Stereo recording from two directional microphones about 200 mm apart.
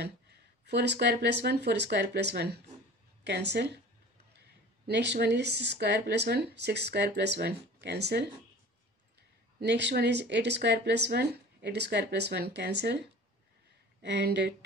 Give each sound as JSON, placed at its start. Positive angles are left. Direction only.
{"t": 0.0, "sound": "speech", "side_deg": -55}
{"t": 9.6, "sound": "speech", "side_deg": -60}
{"t": 14.0, "sound": "speech", "side_deg": -60}